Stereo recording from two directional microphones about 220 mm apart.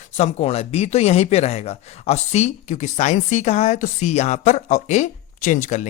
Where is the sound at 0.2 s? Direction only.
30° left (ahead or behind).